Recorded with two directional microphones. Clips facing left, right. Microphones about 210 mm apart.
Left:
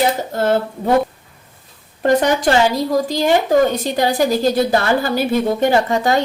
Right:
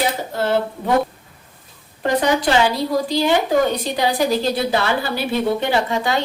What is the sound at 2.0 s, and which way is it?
A woman's voice, 45° left (ahead or behind).